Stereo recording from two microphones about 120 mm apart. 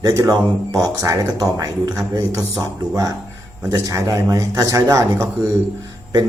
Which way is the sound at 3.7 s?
25° right (ahead or behind).